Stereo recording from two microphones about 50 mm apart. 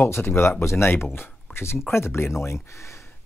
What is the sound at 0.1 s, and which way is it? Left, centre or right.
Speech, left.